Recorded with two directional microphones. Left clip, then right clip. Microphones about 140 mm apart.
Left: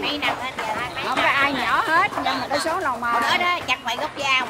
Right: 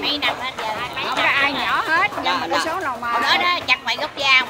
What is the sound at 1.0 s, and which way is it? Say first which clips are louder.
Speech: right 1 dB; 20° left (ahead or behind).